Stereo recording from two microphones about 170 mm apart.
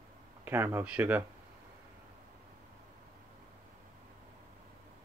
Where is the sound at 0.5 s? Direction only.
10° right (ahead or behind).